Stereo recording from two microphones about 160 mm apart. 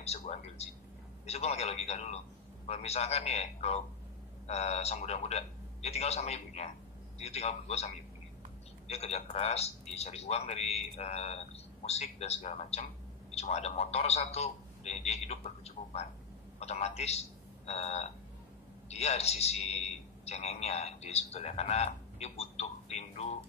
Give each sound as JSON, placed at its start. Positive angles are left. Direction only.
{"t": 0.0, "sound": "a man's voice", "side_deg": 40}